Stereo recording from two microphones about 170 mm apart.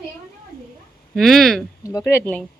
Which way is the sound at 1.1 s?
Centre (ahead or behind).